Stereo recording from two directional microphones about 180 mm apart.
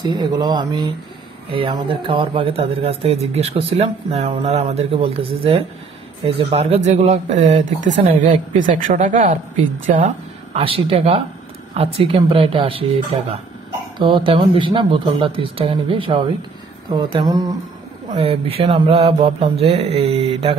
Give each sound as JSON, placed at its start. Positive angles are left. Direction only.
{"t": 0.0, "sound": "speech", "side_deg": -20}
{"t": 18.1, "sound": "speech", "side_deg": -30}